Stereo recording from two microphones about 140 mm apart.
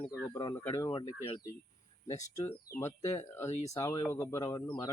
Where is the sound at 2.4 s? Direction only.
20° left (ahead or behind).